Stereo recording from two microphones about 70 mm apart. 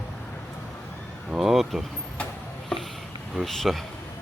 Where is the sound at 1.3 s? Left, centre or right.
Centre.